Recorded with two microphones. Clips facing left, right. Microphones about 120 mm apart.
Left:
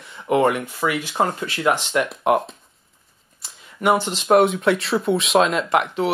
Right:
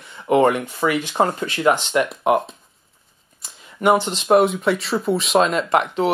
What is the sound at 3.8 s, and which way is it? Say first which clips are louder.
Speech: right 2 dB; centre (ahead or behind).